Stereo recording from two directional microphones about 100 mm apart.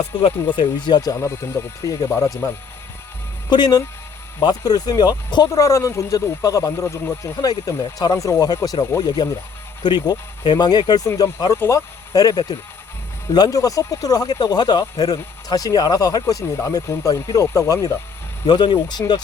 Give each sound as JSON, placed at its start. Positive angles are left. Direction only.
{"t": 0.0, "sound": "speech", "side_deg": 70}
{"t": 0.5, "sound": "speech", "side_deg": 55}
{"t": 1.1, "sound": "speech", "side_deg": 30}
{"t": 3.5, "sound": "speech", "side_deg": 45}
{"t": 5.5, "sound": "speech", "side_deg": 30}
{"t": 11.5, "sound": "speech", "side_deg": 25}
{"t": 12.1, "sound": "speech", "side_deg": 40}
{"t": 18.4, "sound": "speech", "side_deg": 45}